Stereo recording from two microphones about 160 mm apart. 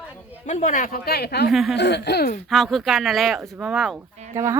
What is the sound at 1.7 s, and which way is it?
Speech, 90° left.